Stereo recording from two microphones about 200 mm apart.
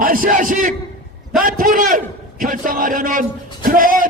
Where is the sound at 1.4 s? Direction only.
40° right (ahead or behind).